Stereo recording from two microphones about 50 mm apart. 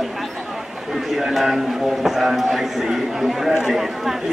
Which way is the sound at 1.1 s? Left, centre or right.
Centre.